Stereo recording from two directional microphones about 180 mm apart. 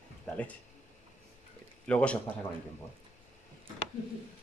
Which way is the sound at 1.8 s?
5° left (ahead or behind).